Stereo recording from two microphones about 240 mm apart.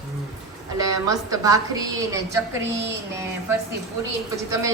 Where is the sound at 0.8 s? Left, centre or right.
Centre.